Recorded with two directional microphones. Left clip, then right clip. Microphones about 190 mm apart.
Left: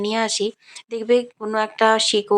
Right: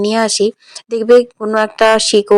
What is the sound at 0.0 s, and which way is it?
Speech, 30° right (ahead or behind).